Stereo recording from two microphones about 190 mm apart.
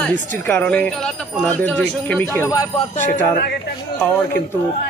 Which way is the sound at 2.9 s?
45° left (ahead or behind).